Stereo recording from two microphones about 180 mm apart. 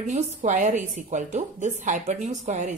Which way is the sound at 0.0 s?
40° right (ahead or behind).